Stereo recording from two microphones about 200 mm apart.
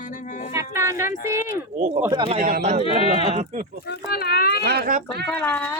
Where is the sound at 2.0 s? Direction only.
25° right (ahead or behind).